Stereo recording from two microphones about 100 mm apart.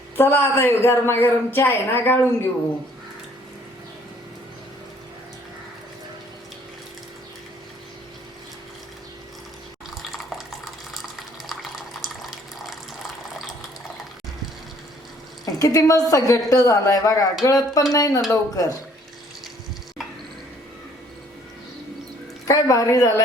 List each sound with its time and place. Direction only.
0.2 s a woman's voice: 20° left (ahead or behind)
10.0 s water: centre (ahead or behind)
15.4 s a woman's voice: 35° left (ahead or behind)
22.4 s a woman's voice: 35° left (ahead or behind)